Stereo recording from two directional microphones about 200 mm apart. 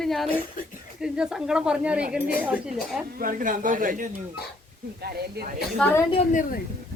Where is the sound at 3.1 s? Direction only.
45° right (ahead or behind).